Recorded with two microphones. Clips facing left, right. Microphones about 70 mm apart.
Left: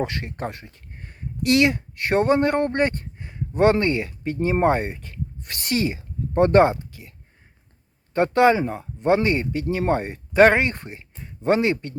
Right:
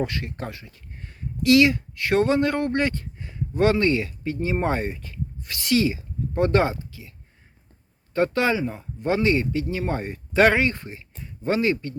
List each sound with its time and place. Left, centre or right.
0.0 s speech: left
0.9 s speech: left
8.1 s speech: left